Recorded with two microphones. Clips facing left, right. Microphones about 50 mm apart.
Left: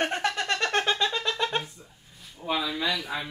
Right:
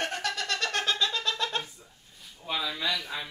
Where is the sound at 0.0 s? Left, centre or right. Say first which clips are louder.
Left 4 dB; left.